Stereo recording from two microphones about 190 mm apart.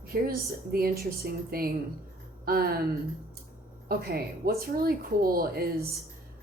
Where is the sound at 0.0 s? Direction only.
50° right (ahead or behind).